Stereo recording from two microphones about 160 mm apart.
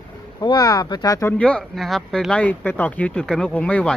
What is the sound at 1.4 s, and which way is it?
Speech, 5° left (ahead or behind).